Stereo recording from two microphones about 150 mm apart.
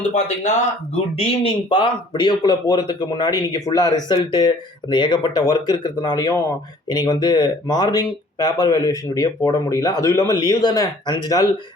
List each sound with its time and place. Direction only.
0.1 s speech: 50° left (ahead or behind)
1.7 s speech: 30° left (ahead or behind)